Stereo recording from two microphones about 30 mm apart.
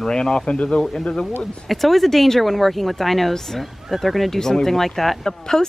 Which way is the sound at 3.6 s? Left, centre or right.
Centre.